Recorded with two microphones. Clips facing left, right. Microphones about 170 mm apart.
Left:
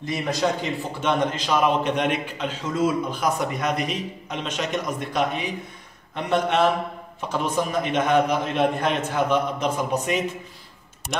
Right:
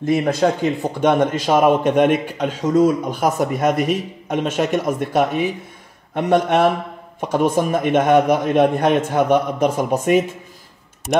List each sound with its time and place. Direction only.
0.0 s a man's voice: 55° right (ahead or behind)
11.0 s speech: centre (ahead or behind)